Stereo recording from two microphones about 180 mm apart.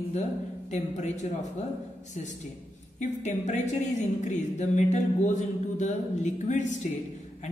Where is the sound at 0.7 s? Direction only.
40° left (ahead or behind).